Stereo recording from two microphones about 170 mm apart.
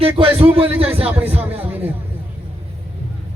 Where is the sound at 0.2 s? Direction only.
35° right (ahead or behind).